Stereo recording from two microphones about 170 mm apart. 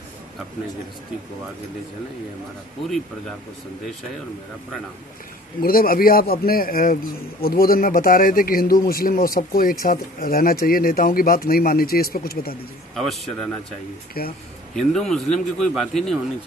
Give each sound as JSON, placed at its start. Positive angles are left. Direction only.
{"t": 5.6, "sound": "speech", "side_deg": 60}
{"t": 12.9, "sound": "a man's voice", "side_deg": 0}
{"t": 14.2, "sound": "speech", "side_deg": 60}
{"t": 14.8, "sound": "a man's voice", "side_deg": 0}